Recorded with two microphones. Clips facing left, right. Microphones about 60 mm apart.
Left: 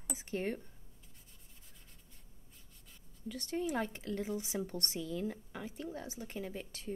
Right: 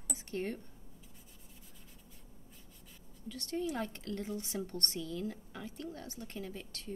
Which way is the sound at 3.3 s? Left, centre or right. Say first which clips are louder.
Even; centre.